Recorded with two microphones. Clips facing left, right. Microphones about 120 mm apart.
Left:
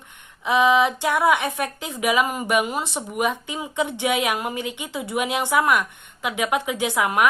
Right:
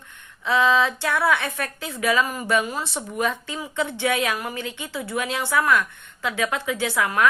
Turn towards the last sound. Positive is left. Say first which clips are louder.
# left 1 dB
turn(degrees=20)  # may be behind; listen again after turning